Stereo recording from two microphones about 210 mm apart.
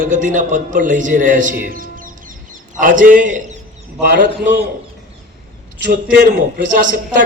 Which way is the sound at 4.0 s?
50° right (ahead or behind).